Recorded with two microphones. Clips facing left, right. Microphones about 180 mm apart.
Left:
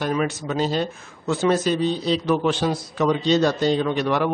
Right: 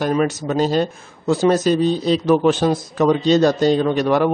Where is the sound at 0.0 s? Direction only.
40° right (ahead or behind).